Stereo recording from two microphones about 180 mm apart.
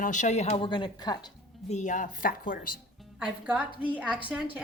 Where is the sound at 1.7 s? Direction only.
45° left (ahead or behind).